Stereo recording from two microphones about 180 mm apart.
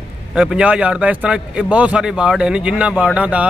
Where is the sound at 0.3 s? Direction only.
5° right (ahead or behind).